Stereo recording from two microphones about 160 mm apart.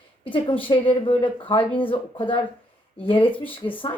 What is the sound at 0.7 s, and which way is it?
Speech, 35° left (ahead or behind).